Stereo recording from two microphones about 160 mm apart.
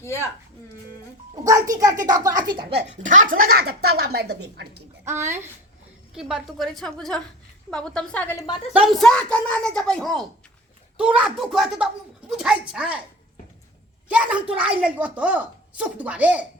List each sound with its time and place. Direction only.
0.0 s speech: 15° left (ahead or behind)
1.5 s speech: 20° right (ahead or behind)
2.9 s speech: 50° right (ahead or behind); by 4.7 s 90° right
5.0 s speech: 15° right (ahead or behind)
6.1 s a woman's voice: 5° right (ahead or behind)
8.4 s a woman's voice: 25° left (ahead or behind)
8.7 s a woman's voice: 5° right (ahead or behind)
14.1 s speech: 10° right (ahead or behind)